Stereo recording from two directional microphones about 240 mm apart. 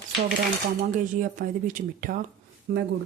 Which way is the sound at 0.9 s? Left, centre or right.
Right.